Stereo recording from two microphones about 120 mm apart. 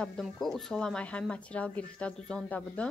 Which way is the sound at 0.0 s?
Centre (ahead or behind).